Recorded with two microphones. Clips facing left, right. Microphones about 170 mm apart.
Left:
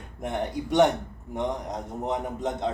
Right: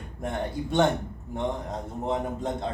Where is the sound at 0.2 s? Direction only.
20° left (ahead or behind).